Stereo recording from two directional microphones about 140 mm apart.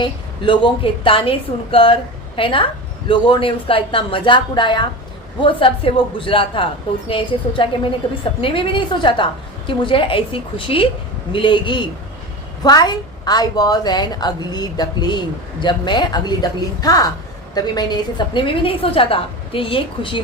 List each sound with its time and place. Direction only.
0.0 s a woman's voice: 35° left (ahead or behind)